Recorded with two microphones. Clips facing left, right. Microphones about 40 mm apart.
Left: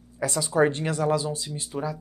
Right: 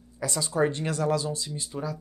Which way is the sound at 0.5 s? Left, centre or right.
Left.